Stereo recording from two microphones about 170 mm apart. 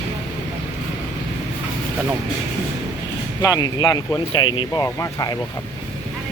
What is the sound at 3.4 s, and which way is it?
Speech, 20° left (ahead or behind).